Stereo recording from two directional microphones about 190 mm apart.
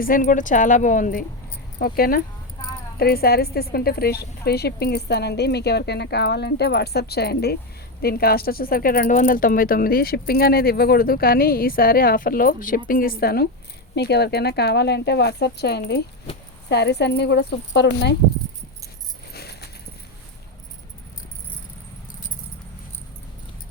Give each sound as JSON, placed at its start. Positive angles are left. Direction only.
{"t": 0.0, "sound": "a woman's voice", "side_deg": 45}
{"t": 19.3, "sound": "keys jangling", "side_deg": 55}